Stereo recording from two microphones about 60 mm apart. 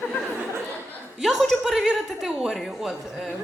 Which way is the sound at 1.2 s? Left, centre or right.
Centre.